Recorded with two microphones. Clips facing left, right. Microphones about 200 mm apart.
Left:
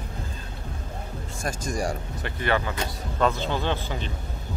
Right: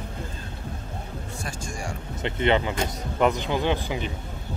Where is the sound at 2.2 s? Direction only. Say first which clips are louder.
Right 4 dB; 20° right (ahead or behind).